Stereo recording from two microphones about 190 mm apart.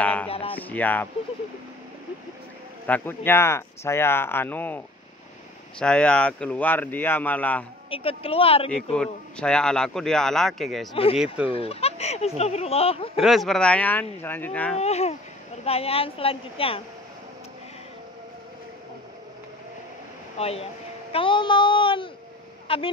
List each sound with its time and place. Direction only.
0.0 s a sound: 10° left (ahead or behind)
0.3 s speech: 30° left (ahead or behind)
0.6 s speech: 10° left (ahead or behind)
2.9 s speech: 10° left (ahead or behind)
7.9 s speech: 30° left (ahead or behind)
8.9 s speech: 5° left (ahead or behind)
11.4 s speech: 30° left (ahead or behind)
13.2 s speech: centre (ahead or behind)
14.8 s a woman's voice: 35° left (ahead or behind)
20.3 s a woman's voice: 30° left (ahead or behind)